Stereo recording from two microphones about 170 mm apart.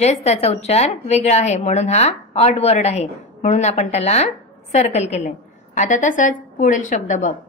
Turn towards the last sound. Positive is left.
turn(degrees=50)  # may be behind; listen again after turning